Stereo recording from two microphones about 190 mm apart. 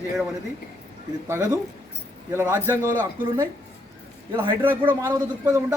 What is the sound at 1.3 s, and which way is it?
A man's voice, 20° right (ahead or behind).